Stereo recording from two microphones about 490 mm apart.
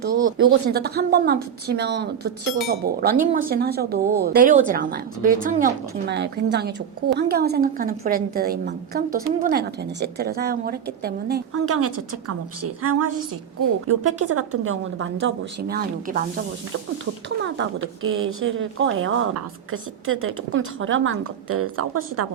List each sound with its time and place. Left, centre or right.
0.3 s speech: right